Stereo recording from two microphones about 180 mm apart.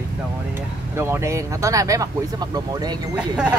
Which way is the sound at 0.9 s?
15° right (ahead or behind).